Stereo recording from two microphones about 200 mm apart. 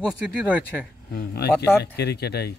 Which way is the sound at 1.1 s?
50° left (ahead or behind).